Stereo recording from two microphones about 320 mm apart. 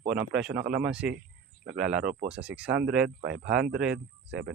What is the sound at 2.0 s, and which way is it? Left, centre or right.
Speech, right.